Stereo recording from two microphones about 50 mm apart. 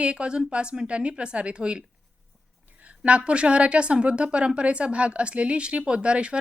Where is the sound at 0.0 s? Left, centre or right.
Right.